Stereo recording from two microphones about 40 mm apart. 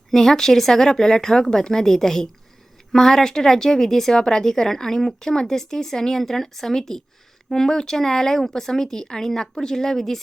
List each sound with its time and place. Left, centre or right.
0.1 s a woman's voice: centre